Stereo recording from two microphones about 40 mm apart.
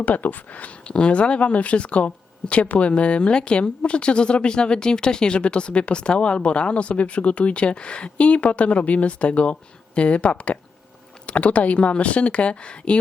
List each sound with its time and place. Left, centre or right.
0.0 s speech: left